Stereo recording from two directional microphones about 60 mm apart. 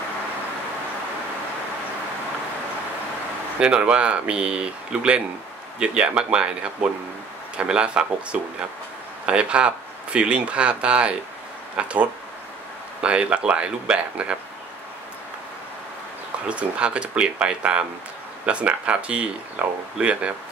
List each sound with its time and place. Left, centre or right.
3.5 s speech: centre
16.4 s speech: centre
19.6 s speech: right